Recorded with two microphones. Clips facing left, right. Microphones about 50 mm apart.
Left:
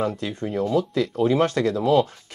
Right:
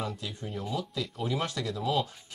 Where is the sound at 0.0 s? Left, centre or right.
Left.